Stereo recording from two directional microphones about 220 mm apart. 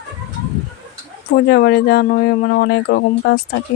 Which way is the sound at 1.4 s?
50° left (ahead or behind).